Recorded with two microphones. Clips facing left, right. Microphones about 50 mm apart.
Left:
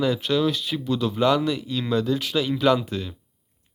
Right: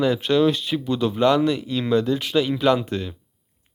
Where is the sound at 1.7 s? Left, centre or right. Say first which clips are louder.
Right 3 dB; centre.